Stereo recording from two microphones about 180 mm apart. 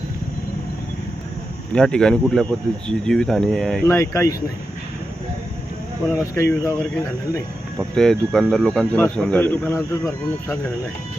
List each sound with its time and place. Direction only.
1.7 s speech: 5° left (ahead or behind)
3.8 s speech: 15° left (ahead or behind)
6.1 s speech: 15° left (ahead or behind)
7.9 s speech: 5° left (ahead or behind)